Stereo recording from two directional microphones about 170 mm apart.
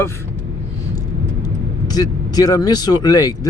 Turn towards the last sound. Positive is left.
turn(degrees=20)  # may be behind; listen again after turning